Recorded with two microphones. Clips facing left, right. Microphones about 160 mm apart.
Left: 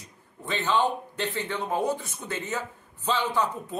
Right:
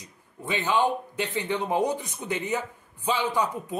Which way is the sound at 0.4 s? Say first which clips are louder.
Right 1 dB; 10° right (ahead or behind).